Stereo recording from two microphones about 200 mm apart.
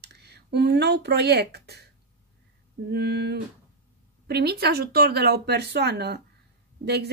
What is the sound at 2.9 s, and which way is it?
Speech, 55° right (ahead or behind).